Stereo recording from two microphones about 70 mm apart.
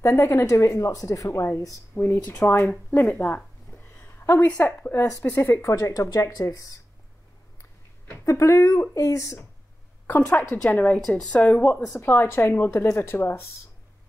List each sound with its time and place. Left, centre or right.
0.0 s a woman's voice: left
2.4 s a woman's voice: left
5.4 s a woman's voice: left
8.3 s a woman's voice: left
10.0 s a woman's voice: left
11.0 s speech: centre
11.2 s a woman's voice: centre